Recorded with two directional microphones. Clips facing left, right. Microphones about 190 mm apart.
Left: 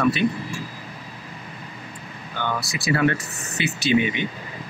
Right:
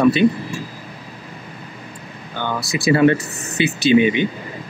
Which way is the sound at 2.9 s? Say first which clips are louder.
Right 7 dB; 25° right (ahead or behind).